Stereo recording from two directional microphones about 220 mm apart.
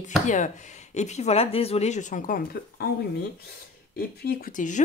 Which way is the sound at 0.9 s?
30° left (ahead or behind).